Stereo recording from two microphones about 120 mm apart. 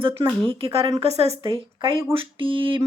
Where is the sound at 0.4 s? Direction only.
55° right (ahead or behind).